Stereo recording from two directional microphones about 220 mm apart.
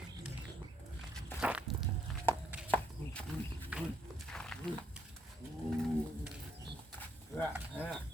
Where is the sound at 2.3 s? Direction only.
10° left (ahead or behind).